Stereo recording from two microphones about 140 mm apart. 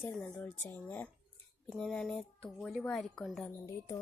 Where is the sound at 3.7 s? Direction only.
25° left (ahead or behind).